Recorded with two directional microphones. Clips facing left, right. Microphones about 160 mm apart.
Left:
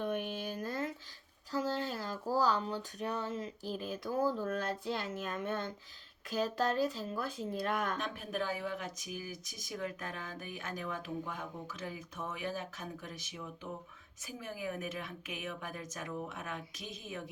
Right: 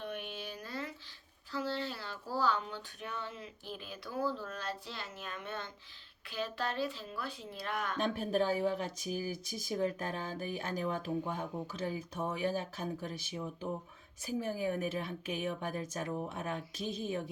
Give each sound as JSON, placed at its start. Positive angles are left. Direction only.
{"t": 0.0, "sound": "a sound", "side_deg": 45}
{"t": 1.5, "sound": "speech", "side_deg": 45}
{"t": 7.9, "sound": "speech", "side_deg": -35}